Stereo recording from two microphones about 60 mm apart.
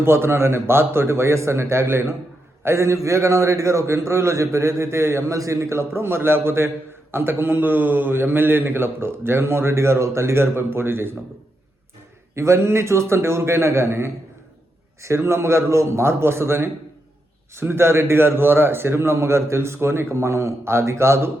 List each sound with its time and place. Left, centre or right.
0.0 s a man's voice: right
5.3 s a man's voice: right
12.3 s a man's voice: right